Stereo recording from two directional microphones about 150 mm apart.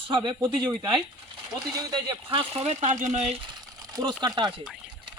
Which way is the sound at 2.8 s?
55° right (ahead or behind).